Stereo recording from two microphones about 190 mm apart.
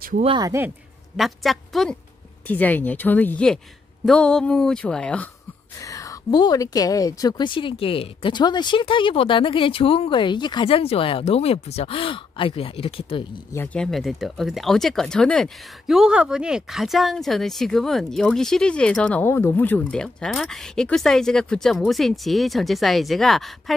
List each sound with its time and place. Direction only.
0.2 s speech: 25° right (ahead or behind)
1.1 s speech: centre (ahead or behind)
5.8 s a woman's voice: 20° left (ahead or behind)
13.7 s speech: centre (ahead or behind)